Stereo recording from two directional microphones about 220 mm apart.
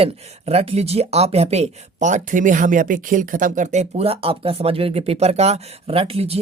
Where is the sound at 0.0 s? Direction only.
25° right (ahead or behind).